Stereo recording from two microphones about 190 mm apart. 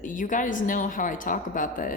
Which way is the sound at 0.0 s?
45° left (ahead or behind).